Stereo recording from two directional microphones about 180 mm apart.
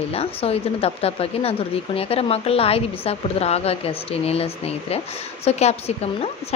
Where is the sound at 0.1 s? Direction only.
35° left (ahead or behind).